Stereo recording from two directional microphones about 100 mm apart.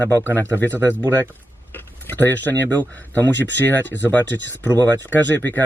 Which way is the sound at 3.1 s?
20° left (ahead or behind).